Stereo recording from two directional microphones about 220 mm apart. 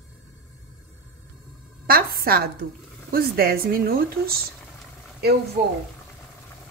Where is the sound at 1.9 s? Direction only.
45° right (ahead or behind).